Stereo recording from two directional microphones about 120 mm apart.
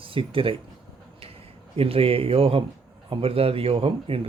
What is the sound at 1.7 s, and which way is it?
Speech, 50° right (ahead or behind).